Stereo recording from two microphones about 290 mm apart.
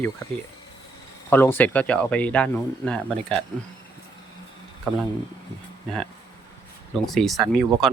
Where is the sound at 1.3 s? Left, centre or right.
Centre.